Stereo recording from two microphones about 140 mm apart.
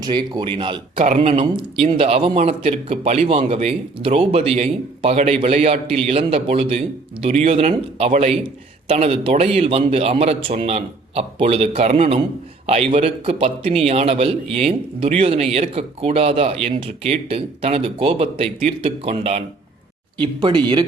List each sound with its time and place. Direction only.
0.0 s speech: 30° right (ahead or behind)
1.0 s a man's voice: 60° right (ahead or behind); by 20.8 s 30° right (ahead or behind)